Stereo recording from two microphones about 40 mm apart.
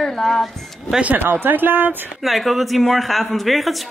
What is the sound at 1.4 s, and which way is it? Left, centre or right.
Speech, right.